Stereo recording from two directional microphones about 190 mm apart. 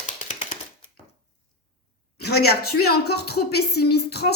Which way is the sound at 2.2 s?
60° left (ahead or behind).